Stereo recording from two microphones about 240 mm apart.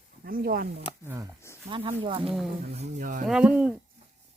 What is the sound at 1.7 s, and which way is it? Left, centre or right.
Speech, right.